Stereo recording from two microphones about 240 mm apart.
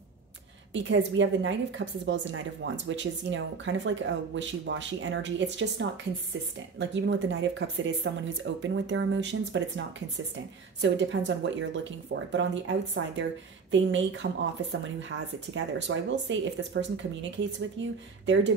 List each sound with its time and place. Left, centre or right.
0.7 s a woman's voice: right